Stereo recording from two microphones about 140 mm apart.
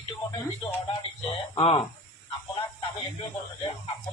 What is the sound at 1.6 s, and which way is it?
Speech, 45° left (ahead or behind).